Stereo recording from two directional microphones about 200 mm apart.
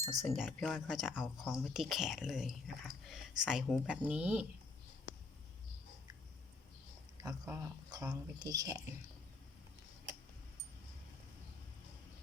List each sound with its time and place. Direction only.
0.2 s speech: centre (ahead or behind)
7.2 s speech: 15° right (ahead or behind)